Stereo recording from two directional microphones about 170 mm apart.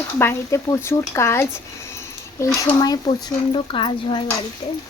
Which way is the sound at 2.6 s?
25° left (ahead or behind).